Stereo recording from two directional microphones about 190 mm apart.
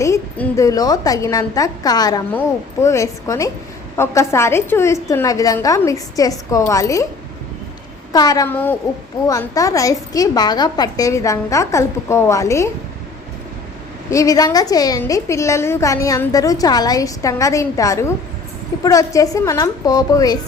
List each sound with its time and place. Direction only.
0.0 s a woman's voice: 15° left (ahead or behind)
8.1 s a woman's voice: 20° left (ahead or behind)
14.1 s a woman's voice: 15° left (ahead or behind)